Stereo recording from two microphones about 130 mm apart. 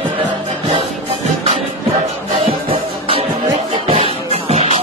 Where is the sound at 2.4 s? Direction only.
45° right (ahead or behind).